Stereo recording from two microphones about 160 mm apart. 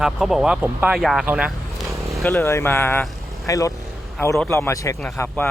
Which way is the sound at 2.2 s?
15° left (ahead or behind).